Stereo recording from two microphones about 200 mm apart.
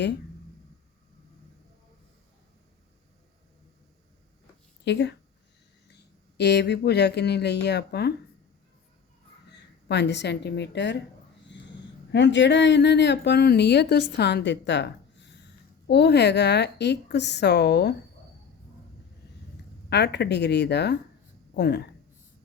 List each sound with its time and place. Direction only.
4.9 s speech: 60° left (ahead or behind)
9.5 s speech: 60° left (ahead or behind)
11.5 s a sound: 60° left (ahead or behind)
12.1 s speech: 65° left (ahead or behind)
19.9 s speech: 55° left (ahead or behind)